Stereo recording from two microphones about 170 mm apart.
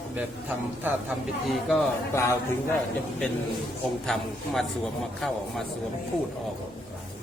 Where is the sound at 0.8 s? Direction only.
5° right (ahead or behind).